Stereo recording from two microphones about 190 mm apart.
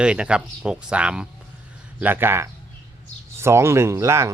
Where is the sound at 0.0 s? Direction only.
5° right (ahead or behind).